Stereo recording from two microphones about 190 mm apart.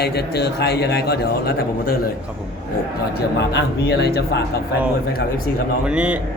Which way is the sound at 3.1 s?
60° left (ahead or behind).